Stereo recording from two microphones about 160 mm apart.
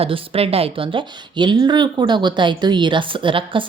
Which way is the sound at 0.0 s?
35° right (ahead or behind).